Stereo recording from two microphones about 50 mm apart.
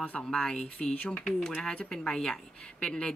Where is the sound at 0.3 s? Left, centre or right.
Centre.